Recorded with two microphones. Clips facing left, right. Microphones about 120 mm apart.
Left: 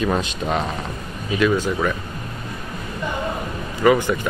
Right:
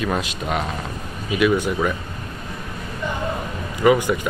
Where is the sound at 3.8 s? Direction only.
15° right (ahead or behind).